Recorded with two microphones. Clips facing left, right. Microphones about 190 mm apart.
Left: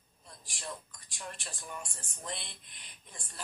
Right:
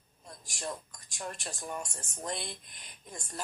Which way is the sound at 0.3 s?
45° right (ahead or behind).